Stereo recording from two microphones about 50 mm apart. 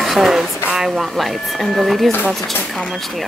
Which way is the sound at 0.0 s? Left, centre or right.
Centre.